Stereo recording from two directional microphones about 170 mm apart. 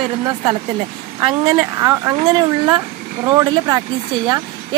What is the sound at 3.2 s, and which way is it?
Speech, 20° right (ahead or behind).